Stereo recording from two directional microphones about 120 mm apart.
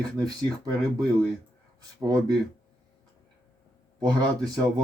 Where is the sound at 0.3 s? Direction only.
35° right (ahead or behind).